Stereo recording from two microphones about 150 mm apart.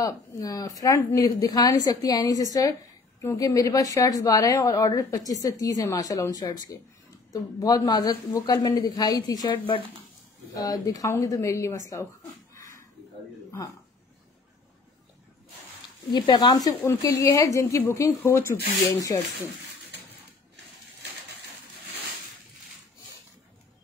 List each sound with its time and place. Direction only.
0.0 s a woman's voice: 25° left (ahead or behind)
16.1 s a woman's voice: 30° left (ahead or behind)